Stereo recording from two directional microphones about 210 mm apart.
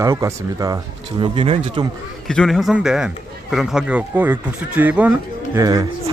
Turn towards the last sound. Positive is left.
turn(degrees=-15)  # may be behind; listen again after turning